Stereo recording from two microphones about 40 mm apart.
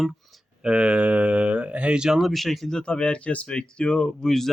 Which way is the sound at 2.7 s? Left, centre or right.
Left.